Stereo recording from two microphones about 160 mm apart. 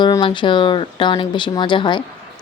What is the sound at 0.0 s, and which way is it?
A woman's voice, 30° left (ahead or behind).